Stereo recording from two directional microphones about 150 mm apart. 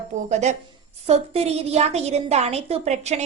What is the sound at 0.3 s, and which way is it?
A woman's voice, 50° right (ahead or behind).